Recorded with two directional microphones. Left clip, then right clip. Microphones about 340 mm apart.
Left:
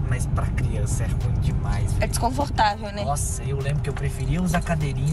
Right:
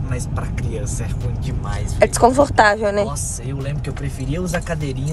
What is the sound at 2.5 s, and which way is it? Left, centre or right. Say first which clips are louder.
Speech: right 8 dB; right.